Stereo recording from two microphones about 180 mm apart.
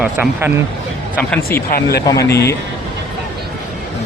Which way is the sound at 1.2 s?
10° left (ahead or behind).